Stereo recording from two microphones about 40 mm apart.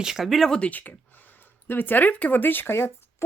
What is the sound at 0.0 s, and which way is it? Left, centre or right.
Speech, centre.